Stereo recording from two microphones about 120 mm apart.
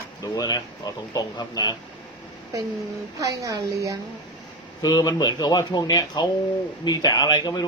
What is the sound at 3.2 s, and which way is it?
Speech, 30° right (ahead or behind).